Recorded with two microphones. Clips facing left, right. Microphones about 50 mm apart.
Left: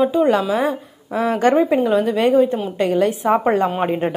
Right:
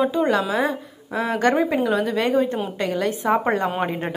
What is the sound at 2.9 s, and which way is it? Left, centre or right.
Speech, left.